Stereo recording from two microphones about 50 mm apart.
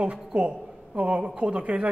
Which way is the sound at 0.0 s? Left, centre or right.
Right.